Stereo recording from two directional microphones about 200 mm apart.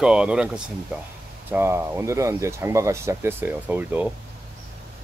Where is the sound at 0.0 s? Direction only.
5° right (ahead or behind).